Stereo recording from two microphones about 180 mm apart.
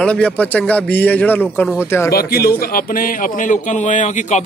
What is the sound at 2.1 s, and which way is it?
Speech, 55° left (ahead or behind).